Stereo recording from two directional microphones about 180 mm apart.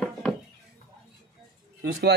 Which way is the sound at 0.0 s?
5° left (ahead or behind).